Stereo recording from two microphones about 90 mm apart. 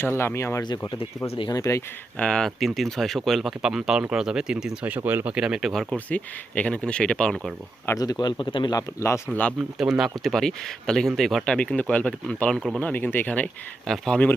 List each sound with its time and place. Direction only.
0.2 s speech: 30° left (ahead or behind)
2.1 s speech: 10° left (ahead or behind); by 4.9 s 10° right (ahead or behind)
5.0 s speech: 20° right (ahead or behind)
5.3 s speech: 10° right (ahead or behind)
5.9 s speech: 15° left (ahead or behind)
7.9 s a man's voice: 50° left (ahead or behind)
8.7 s speech: 35° left (ahead or behind)
9.3 s speech: 15° left (ahead or behind)
9.7 s speech: 5° right (ahead or behind); by 13.5 s 15° left (ahead or behind)
13.8 s speech: 5° left (ahead or behind)